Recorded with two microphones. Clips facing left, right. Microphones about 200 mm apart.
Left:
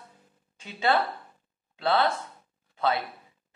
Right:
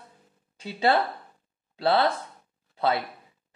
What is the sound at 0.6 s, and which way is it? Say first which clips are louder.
Speech: right 2 dB; 35° right (ahead or behind).